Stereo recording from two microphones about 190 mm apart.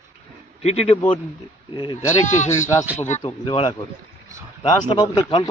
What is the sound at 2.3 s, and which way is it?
Speech, 40° left (ahead or behind).